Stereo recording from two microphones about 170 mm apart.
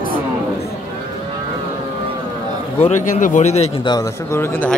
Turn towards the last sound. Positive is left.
turn(degrees=10)  # may be behind; listen again after turning